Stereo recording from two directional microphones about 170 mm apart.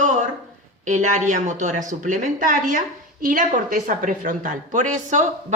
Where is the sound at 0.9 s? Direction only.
45° right (ahead or behind).